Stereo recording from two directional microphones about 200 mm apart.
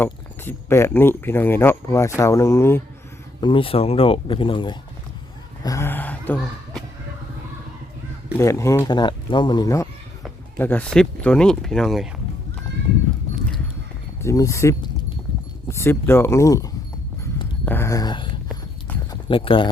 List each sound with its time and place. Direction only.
0.0 s speech: 10° left (ahead or behind)
3.4 s speech: 25° left (ahead or behind)
5.6 s speech: 15° left (ahead or behind)
8.4 s speech: 15° left (ahead or behind)
10.6 s speech: 10° left (ahead or behind)
14.2 s speech: 15° left (ahead or behind)
18.9 s clip-clop: 10° left (ahead or behind)
19.3 s speech: 25° left (ahead or behind)